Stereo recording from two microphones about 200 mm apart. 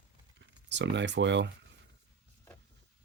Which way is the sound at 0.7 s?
65° right (ahead or behind).